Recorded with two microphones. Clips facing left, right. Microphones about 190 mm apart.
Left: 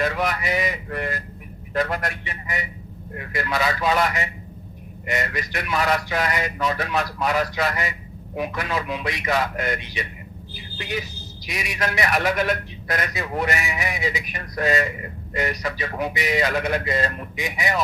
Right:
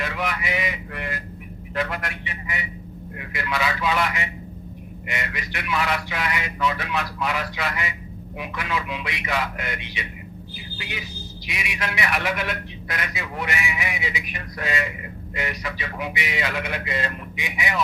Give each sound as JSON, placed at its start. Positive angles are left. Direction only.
{"t": 0.0, "sound": "a man's voice", "side_deg": 40}